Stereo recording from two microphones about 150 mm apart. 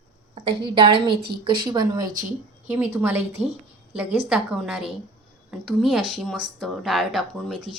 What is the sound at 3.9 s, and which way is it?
Speech, 5° right (ahead or behind).